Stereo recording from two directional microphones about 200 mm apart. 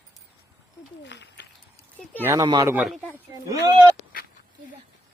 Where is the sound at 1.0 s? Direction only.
60° left (ahead or behind).